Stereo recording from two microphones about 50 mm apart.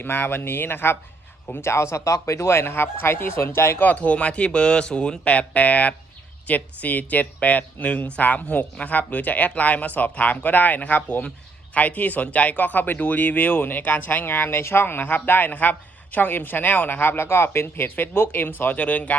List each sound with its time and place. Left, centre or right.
0.0 s speech: left
1.5 s speech: left
3.9 s speech: left
17.8 s speech: left
18.8 s speech: left